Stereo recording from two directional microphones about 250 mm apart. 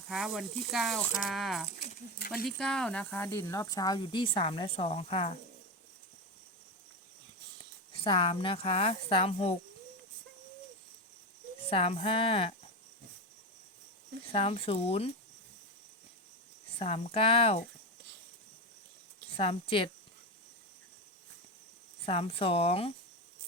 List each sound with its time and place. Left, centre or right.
0.1 s speech: centre; by 5.3 s left
7.9 s speech: left
11.7 s speech: left
14.3 s speech: left
16.7 s speech: left
19.4 s speech: left
22.0 s speech: left